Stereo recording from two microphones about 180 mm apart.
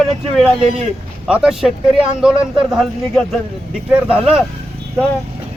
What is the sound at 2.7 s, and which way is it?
Speech, centre (ahead or behind).